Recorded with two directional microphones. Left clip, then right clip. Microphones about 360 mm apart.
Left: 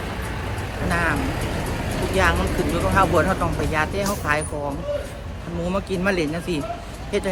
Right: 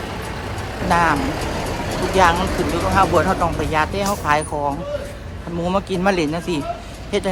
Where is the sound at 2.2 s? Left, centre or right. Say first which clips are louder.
Right 5 dB; centre.